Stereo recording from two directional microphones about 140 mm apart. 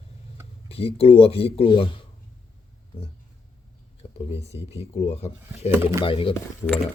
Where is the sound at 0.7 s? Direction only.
45° left (ahead or behind).